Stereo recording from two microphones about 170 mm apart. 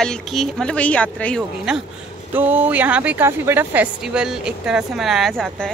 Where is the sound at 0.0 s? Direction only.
Centre (ahead or behind).